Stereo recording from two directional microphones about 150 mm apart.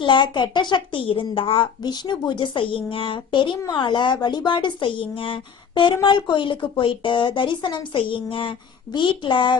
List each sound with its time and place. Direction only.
0.0 s a woman's voice: 30° left (ahead or behind)